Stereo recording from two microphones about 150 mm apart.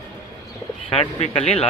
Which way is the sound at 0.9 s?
40° left (ahead or behind).